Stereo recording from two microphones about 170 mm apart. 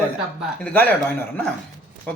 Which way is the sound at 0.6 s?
10° left (ahead or behind).